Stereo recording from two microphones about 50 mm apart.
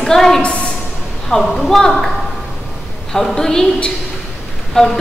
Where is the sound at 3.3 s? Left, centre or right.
Centre.